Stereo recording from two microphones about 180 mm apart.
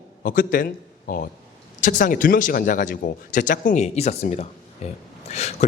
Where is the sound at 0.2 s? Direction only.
50° left (ahead or behind).